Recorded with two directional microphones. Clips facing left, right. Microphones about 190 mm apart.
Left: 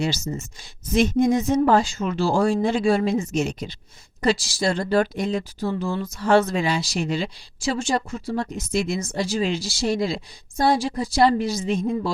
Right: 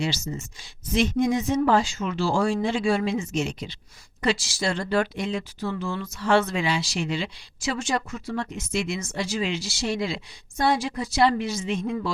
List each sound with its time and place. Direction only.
0.0 s speech: 40° left (ahead or behind)